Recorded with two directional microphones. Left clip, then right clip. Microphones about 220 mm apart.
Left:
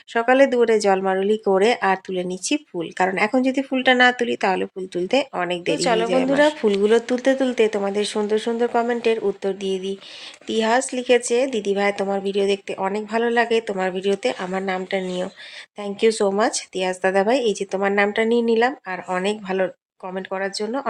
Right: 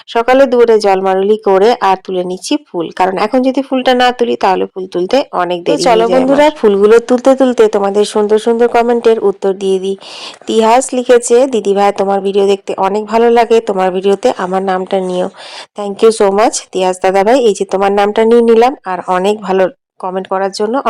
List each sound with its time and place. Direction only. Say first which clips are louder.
0.1 s speech: right 8 dB; 20° right (ahead or behind)
5.7 s speech: right 11 dB; 30° right (ahead or behind)